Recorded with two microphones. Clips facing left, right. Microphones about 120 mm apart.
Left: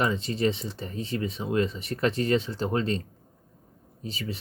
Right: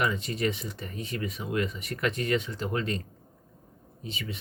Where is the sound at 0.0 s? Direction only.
30° left (ahead or behind).